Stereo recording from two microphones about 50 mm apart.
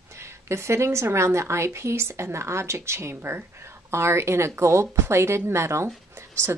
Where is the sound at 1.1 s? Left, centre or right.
Right.